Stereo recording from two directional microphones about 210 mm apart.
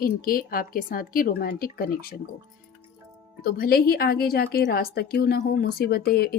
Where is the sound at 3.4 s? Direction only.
45° left (ahead or behind).